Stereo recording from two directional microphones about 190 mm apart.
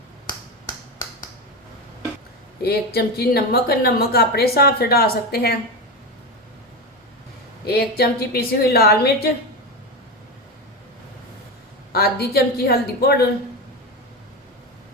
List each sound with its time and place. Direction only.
2.6 s speech: 55° left (ahead or behind)
7.6 s speech: 55° left (ahead or behind)
11.9 s speech: 55° left (ahead or behind)